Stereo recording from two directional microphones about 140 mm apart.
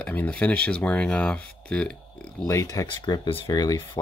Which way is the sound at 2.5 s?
25° left (ahead or behind).